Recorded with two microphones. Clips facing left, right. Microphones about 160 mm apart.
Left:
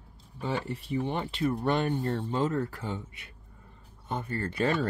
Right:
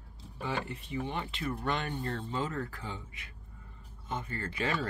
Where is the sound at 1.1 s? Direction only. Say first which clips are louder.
Left 8 dB; 40° left (ahead or behind).